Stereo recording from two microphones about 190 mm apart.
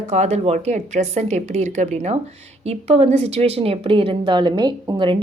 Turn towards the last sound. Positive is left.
turn(degrees=-25)  # may be behind; listen again after turning